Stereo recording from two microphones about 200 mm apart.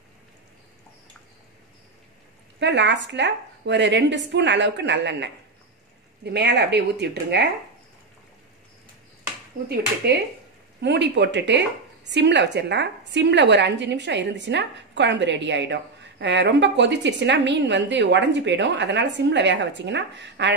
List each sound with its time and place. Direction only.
2.6 s speech: 60° right (ahead or behind)
9.7 s speech: 55° right (ahead or behind)